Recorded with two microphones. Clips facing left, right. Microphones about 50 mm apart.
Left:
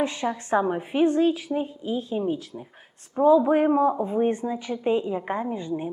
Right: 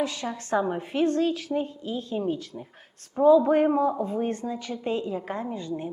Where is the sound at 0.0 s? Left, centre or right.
Left.